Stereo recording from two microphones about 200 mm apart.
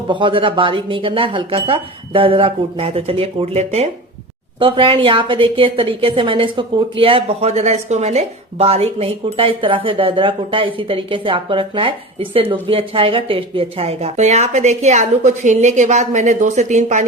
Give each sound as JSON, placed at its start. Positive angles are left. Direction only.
{"t": 0.1, "sound": "a woman's voice", "side_deg": -25}